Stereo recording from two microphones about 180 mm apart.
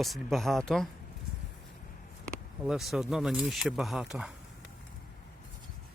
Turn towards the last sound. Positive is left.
turn(degrees=-5)  # may be behind; listen again after turning